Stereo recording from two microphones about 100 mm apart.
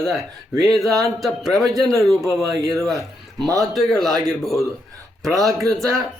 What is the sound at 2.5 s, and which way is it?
Speech, 35° right (ahead or behind).